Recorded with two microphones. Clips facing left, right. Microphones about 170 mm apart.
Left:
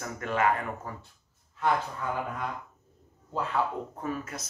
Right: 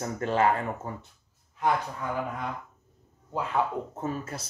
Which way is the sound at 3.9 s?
25° right (ahead or behind).